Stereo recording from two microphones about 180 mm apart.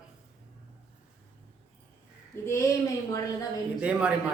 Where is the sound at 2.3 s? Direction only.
15° left (ahead or behind).